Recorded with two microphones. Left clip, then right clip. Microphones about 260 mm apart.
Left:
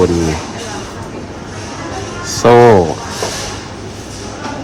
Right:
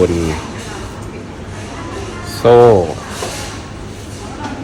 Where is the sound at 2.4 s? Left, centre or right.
Left.